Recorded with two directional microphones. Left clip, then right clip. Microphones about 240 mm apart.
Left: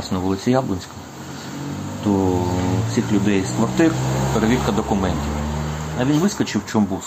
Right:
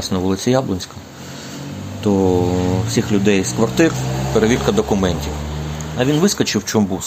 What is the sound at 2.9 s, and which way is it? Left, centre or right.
Speech, right.